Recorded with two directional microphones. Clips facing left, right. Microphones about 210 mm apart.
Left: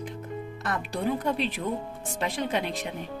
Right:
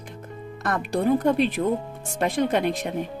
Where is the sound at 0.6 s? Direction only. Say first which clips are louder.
Right 7 dB; 50° right (ahead or behind).